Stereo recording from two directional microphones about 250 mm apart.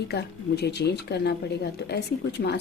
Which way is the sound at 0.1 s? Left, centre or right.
Left.